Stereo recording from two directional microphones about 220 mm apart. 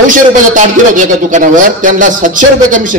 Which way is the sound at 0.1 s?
35° right (ahead or behind).